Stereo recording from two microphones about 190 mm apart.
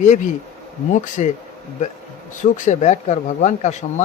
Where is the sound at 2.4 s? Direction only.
40° left (ahead or behind).